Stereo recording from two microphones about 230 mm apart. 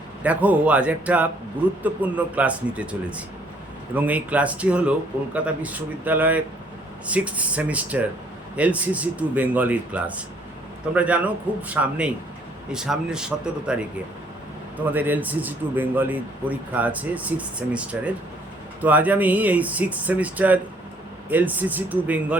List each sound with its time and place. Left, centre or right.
0.2 s a man's voice: centre